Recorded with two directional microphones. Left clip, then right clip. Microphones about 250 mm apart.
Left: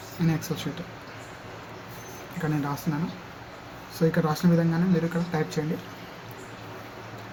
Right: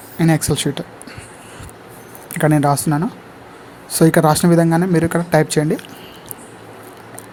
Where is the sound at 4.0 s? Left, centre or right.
Right.